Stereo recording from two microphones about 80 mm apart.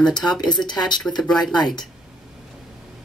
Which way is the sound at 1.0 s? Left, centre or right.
Centre.